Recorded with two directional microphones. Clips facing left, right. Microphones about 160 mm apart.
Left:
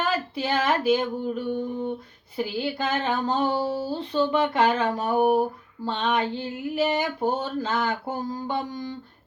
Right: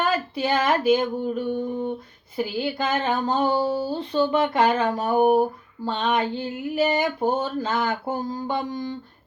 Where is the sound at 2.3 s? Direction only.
45° right (ahead or behind).